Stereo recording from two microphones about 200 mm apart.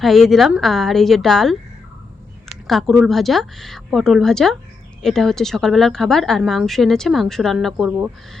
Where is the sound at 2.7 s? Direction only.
Centre (ahead or behind).